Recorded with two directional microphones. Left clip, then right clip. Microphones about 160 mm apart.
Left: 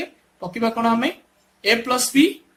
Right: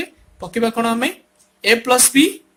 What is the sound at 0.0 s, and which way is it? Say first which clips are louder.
Speech: right 2 dB; 45° right (ahead or behind).